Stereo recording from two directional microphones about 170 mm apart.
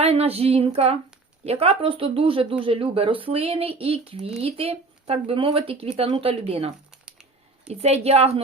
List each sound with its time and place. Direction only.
0.0 s speech: 35° right (ahead or behind)
7.7 s speech: 40° right (ahead or behind)